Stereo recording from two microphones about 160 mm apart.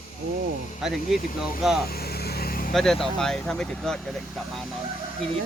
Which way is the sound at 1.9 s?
75° left (ahead or behind).